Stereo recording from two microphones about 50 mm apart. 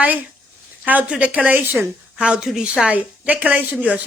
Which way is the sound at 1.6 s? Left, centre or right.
Right.